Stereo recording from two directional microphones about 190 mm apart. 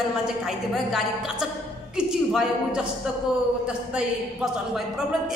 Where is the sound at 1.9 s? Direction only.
5° right (ahead or behind).